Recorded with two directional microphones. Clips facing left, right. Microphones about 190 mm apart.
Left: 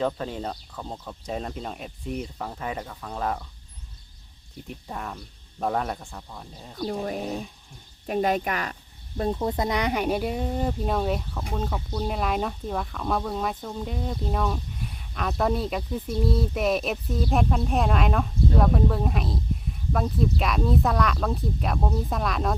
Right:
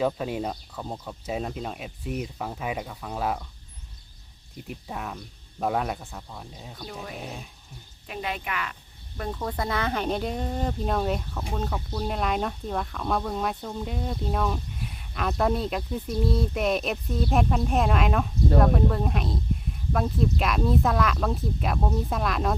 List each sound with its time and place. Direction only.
0.0 s speech: 10° right (ahead or behind)
4.7 s speech: 5° right (ahead or behind)
6.9 s speech: 45° left (ahead or behind)
9.1 s speech: 25° left (ahead or behind); by 22.5 s centre (ahead or behind)